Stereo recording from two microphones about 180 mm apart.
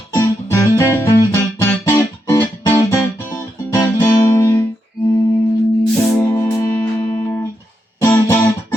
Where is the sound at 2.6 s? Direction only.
15° left (ahead or behind).